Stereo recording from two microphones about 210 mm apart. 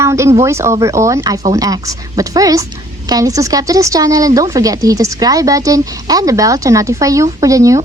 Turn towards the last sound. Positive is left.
turn(degrees=-15)  # may be behind; listen again after turning